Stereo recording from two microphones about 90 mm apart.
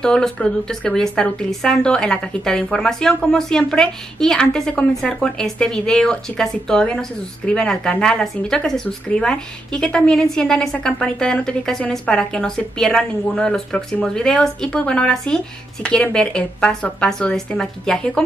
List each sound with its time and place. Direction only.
0.0 s speech: 5° left (ahead or behind)